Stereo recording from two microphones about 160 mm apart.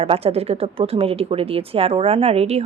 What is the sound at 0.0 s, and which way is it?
Speech, 35° right (ahead or behind).